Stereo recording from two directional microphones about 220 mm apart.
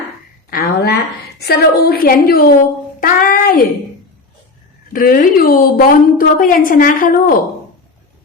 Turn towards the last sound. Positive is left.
turn(degrees=40)  # may be behind; listen again after turning